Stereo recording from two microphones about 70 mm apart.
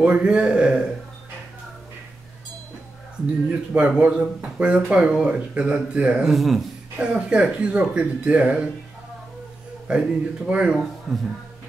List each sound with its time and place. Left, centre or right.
0.0 s speech: centre
3.7 s speech: centre
6.2 s speech: centre
7.0 s speech: centre
9.8 s speech: centre